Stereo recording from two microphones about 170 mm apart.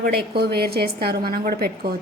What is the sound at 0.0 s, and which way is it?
A woman's voice, 70° right (ahead or behind).